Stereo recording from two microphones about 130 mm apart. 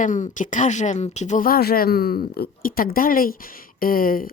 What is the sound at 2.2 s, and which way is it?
Speech, 90° left.